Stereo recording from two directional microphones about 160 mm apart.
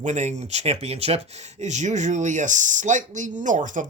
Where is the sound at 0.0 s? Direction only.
45° right (ahead or behind).